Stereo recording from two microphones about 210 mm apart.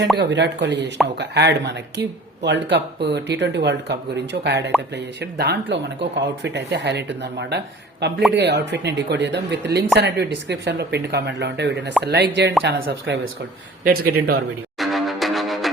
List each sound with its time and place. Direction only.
0.2 s speech: 55° right (ahead or behind)
14.8 s music: centre (ahead or behind)